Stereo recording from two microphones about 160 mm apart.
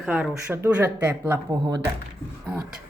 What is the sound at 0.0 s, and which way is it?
Speech, 10° right (ahead or behind).